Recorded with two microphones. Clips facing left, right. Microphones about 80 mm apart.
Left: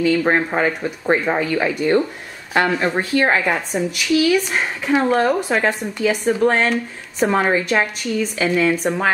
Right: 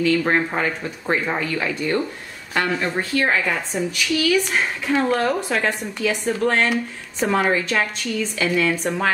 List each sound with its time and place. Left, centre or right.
0.0 s a woman's voice: centre
3.7 s speech: centre